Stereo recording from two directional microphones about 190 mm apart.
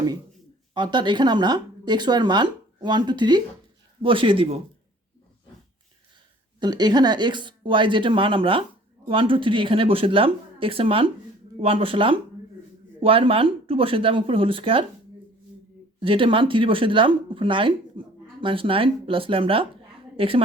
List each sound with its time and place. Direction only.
0.7 s speech: 25° right (ahead or behind)
6.6 s speech: 20° right (ahead or behind)
16.0 s a woman's voice: 25° right (ahead or behind)